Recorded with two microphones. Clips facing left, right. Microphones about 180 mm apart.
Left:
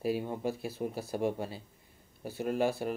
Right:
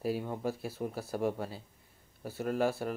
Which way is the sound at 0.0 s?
15° left (ahead or behind).